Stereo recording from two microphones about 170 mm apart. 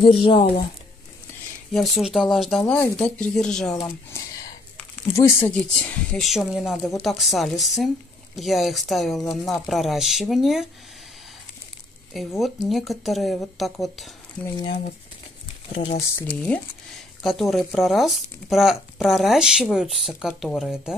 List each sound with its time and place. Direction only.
0.0 s speech: 30° left (ahead or behind)
1.7 s speech: centre (ahead or behind)
3.8 s a sound: 15° left (ahead or behind)
5.1 s speech: 15° left (ahead or behind)
12.1 s speech: centre (ahead or behind)
16.2 s speech: 10° left (ahead or behind)